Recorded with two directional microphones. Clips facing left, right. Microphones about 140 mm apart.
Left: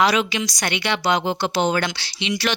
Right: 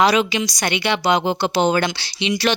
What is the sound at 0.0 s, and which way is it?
Speech, 25° right (ahead or behind).